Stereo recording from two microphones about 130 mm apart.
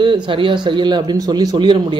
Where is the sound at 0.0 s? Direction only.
40° right (ahead or behind).